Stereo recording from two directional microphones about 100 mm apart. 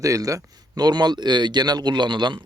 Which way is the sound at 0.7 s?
45° right (ahead or behind).